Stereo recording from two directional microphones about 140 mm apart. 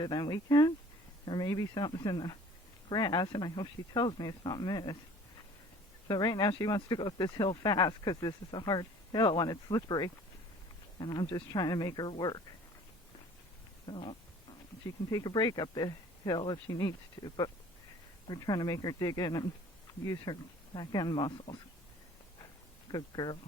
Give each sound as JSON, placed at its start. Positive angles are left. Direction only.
{"t": 0.0, "sound": "speech", "side_deg": 30}
{"t": 6.1, "sound": "speech", "side_deg": 30}
{"t": 13.8, "sound": "speech", "side_deg": 35}
{"t": 22.9, "sound": "speech", "side_deg": 30}